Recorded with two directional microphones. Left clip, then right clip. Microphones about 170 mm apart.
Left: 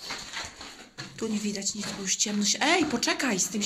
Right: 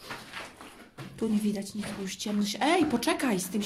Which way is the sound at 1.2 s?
20° right (ahead or behind).